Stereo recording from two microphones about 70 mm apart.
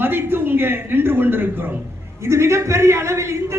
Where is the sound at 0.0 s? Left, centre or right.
Right.